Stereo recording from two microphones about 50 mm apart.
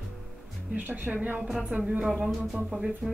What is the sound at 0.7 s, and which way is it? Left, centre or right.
Speech, right.